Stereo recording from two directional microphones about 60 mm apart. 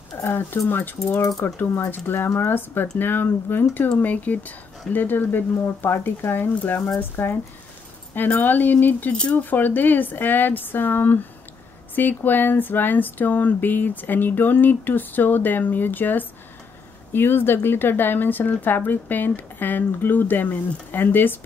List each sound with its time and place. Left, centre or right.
0.3 s speech: left
9.1 s speech: centre
9.4 s speech: left